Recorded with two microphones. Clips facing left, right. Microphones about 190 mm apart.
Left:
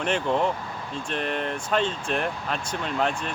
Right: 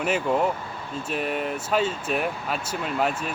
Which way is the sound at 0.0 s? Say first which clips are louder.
Right 1 dB; 5° right (ahead or behind).